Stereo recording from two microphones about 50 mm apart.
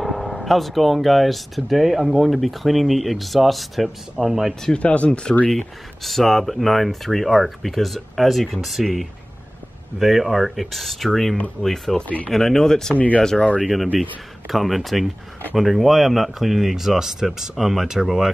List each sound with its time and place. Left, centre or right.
0.0 s speech: centre
4.7 s speech: left
5.5 s speech: centre
12.9 s speech: left
13.2 s speech: centre
13.6 s speech: centre